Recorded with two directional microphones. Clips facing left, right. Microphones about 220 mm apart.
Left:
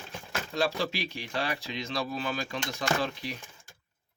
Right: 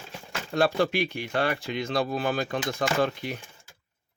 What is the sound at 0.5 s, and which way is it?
Speech, 55° right (ahead or behind).